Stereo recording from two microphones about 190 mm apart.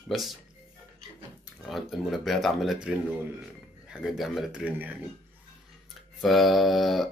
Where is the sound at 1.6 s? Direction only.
Centre (ahead or behind).